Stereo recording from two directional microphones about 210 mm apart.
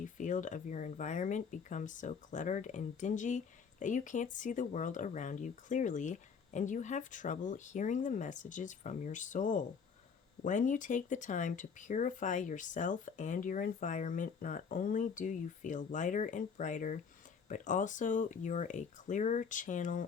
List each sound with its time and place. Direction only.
0.0 s speech: 35° left (ahead or behind)